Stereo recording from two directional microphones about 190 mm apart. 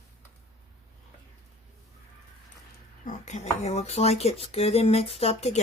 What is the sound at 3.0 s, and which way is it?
Speech, 35° left (ahead or behind).